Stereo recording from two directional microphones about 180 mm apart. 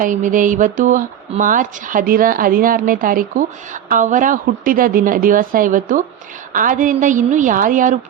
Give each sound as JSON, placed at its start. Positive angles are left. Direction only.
{"t": 0.0, "sound": "speech", "side_deg": -45}